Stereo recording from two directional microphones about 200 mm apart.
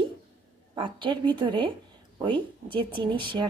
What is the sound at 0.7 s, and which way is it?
A woman's voice, 25° right (ahead or behind).